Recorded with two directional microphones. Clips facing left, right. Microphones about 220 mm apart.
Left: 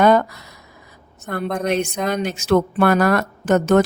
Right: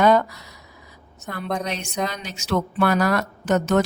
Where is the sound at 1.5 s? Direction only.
55° left (ahead or behind).